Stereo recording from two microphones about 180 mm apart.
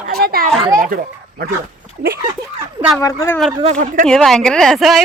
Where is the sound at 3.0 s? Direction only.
15° left (ahead or behind).